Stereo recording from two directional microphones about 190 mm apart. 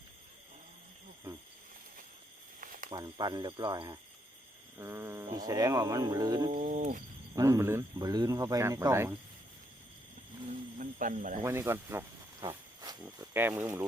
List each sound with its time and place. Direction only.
2.9 s speech: 20° right (ahead or behind)
6.5 s speech: 40° right (ahead or behind)
7.3 s speech: 15° right (ahead or behind)
10.8 s a sound: 45° right (ahead or behind)
11.4 s snake: 15° right (ahead or behind)
13.0 s speech: 10° right (ahead or behind)